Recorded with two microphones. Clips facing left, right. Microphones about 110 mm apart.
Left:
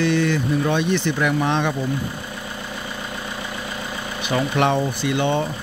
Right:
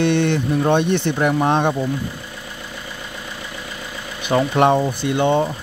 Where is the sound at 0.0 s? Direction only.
65° right (ahead or behind).